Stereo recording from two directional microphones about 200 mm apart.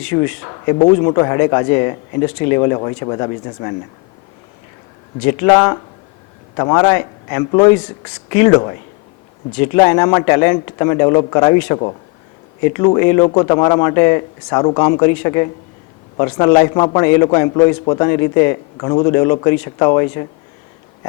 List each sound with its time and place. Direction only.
0.0 s speech: 10° left (ahead or behind)
5.2 s a man's voice: 15° left (ahead or behind)
14.2 s a man's voice: 25° left (ahead or behind)